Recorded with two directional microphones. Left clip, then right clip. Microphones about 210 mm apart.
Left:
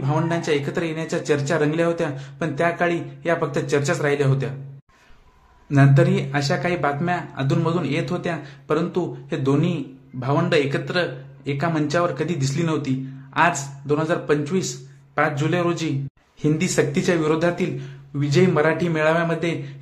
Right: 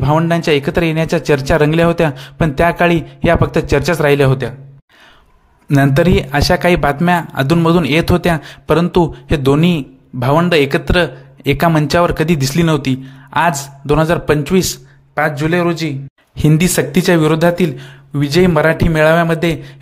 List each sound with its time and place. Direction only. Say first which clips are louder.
0.0 s speech: right 10 dB; 40° right (ahead or behind)
5.7 s speech: right 7 dB; 45° right (ahead or behind)
15.1 s a man's voice: right 6 dB; 30° right (ahead or behind)
16.3 s speech: right 6 dB; 45° right (ahead or behind)